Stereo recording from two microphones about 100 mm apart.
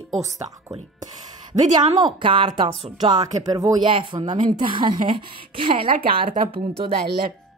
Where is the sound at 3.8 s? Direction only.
55° right (ahead or behind).